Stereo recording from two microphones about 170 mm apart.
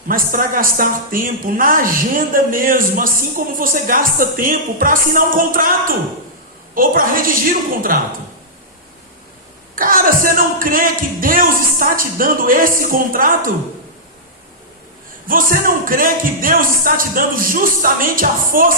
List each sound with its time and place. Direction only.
0.1 s a woman's voice: 55° right (ahead or behind)
9.7 s a woman's voice: 55° right (ahead or behind)
15.3 s a woman's voice: 55° right (ahead or behind)